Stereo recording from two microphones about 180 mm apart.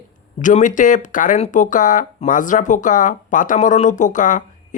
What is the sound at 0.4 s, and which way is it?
Speech, 45° left (ahead or behind).